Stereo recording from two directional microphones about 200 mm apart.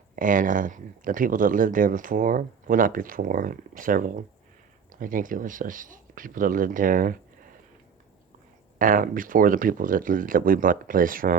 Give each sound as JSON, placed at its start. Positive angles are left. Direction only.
{"t": 0.2, "sound": "speech", "side_deg": -40}
{"t": 8.8, "sound": "speech", "side_deg": -45}